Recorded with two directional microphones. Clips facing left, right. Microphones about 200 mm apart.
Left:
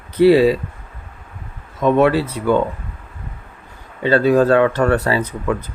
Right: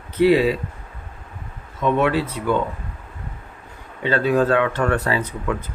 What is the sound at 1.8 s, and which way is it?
Speech, 40° left (ahead or behind).